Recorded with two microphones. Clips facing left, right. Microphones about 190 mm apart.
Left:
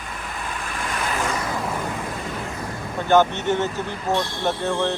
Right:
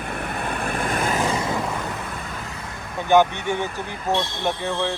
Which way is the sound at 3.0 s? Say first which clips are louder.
Even; 15° right (ahead or behind).